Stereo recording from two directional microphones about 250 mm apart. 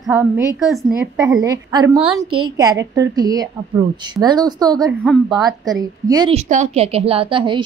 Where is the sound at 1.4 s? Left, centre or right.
Centre.